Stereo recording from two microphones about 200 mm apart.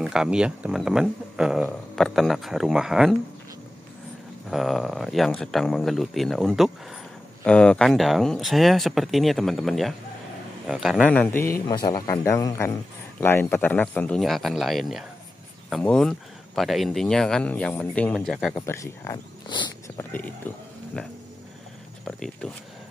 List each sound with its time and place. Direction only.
0.0 s speech: 5° right (ahead or behind)
4.5 s speech: centre (ahead or behind)
11.1 s speech: 10° left (ahead or behind)
11.6 s speech: 20° left (ahead or behind); by 18.5 s centre (ahead or behind)
18.7 s speech: 15° left (ahead or behind)
20.4 s speech: 10° left (ahead or behind)